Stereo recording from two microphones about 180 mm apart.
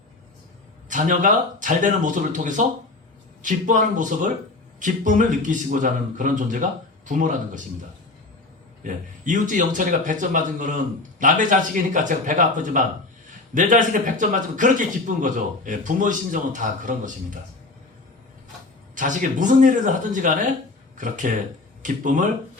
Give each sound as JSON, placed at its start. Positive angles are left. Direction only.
{"t": 0.9, "sound": "speech", "side_deg": -45}
{"t": 8.8, "sound": "speech", "side_deg": -45}
{"t": 18.9, "sound": "speech", "side_deg": -45}